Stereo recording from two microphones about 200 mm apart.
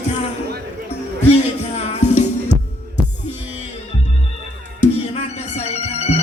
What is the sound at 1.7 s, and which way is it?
Music, 35° left (ahead or behind).